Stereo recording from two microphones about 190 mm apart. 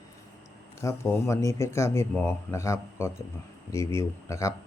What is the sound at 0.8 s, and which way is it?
Speech, 15° left (ahead or behind).